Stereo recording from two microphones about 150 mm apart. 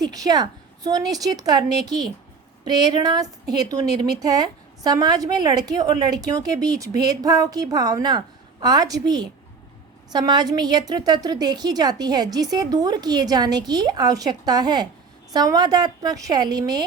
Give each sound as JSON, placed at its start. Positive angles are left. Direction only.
{"t": 0.0, "sound": "a woman's voice", "side_deg": -25}